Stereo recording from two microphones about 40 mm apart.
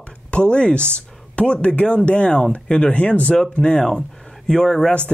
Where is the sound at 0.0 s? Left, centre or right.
Left.